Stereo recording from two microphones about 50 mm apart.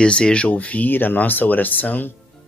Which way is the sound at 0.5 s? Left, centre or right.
Left.